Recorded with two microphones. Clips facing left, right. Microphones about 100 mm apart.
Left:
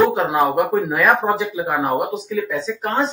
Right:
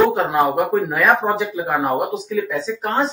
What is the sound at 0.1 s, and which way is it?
Speech, centre (ahead or behind).